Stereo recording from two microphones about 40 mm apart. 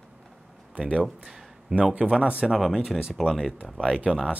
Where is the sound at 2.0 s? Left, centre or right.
Right.